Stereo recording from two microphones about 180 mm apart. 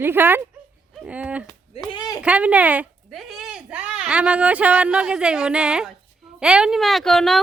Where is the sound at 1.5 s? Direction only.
25° left (ahead or behind).